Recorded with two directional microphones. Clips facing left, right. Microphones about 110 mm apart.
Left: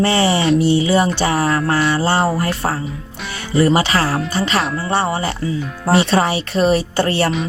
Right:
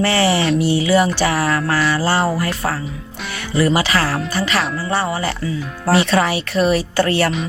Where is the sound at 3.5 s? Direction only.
30° left (ahead or behind).